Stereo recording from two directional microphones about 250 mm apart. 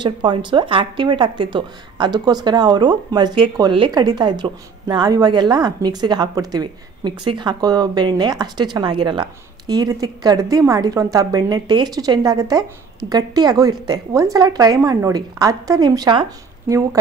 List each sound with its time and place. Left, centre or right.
0.0 s a woman's voice: centre